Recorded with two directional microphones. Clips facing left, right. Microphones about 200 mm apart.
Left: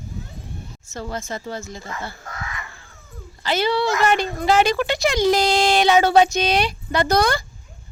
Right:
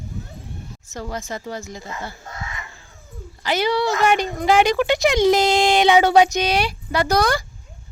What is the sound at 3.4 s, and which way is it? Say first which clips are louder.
A woman's voice: even; 15° right (ahead or behind).